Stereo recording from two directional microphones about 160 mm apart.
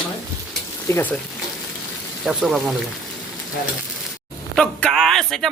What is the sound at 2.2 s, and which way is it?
Speech, centre (ahead or behind).